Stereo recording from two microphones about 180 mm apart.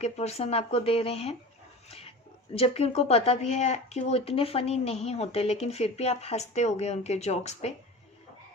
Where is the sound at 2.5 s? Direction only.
35° left (ahead or behind).